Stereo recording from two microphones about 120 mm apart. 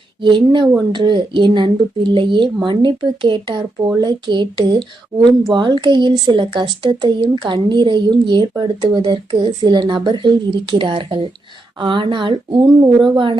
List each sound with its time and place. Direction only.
0.2 s speech: 40° right (ahead or behind)